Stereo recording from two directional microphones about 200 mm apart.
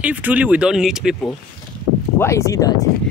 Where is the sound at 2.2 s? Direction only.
15° left (ahead or behind).